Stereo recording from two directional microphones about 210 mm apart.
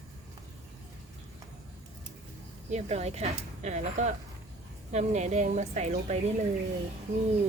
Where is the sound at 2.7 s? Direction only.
30° right (ahead or behind).